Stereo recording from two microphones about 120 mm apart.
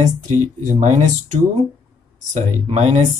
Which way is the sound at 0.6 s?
85° right.